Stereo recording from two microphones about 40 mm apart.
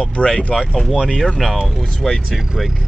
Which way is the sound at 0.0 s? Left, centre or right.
Left.